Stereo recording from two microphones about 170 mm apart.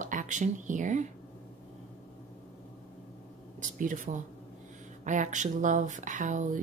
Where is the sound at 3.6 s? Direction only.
50° right (ahead or behind).